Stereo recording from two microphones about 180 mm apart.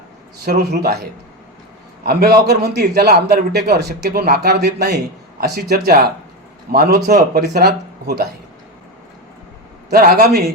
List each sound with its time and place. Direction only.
0.4 s a man's voice: 60° right (ahead or behind)
2.0 s a man's voice: 60° right (ahead or behind)
9.9 s a man's voice: 55° right (ahead or behind)